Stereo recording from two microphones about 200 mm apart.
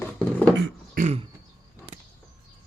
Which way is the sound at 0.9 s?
40° right (ahead or behind).